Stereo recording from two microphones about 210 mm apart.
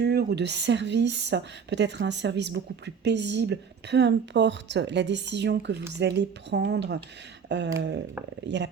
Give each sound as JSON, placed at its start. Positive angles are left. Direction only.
{"t": 0.0, "sound": "a woman's voice", "side_deg": -50}